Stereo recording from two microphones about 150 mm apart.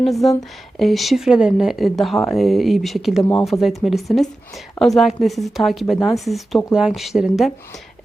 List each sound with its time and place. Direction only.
0.0 s speech: centre (ahead or behind)